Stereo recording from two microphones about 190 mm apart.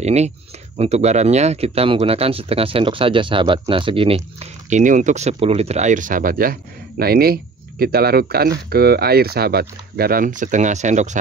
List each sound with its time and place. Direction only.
0.0 s speech: 35° right (ahead or behind)